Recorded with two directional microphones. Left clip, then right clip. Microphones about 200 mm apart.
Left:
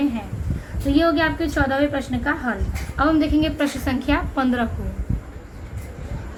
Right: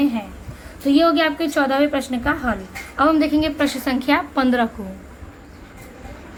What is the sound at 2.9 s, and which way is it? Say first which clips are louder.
A woman's voice: right 2 dB; 40° right (ahead or behind).